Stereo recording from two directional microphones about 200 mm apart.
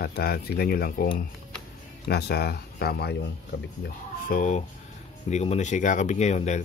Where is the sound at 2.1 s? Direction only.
55° left (ahead or behind).